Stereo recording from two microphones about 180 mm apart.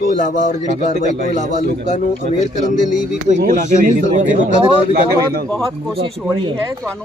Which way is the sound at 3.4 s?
50° right (ahead or behind).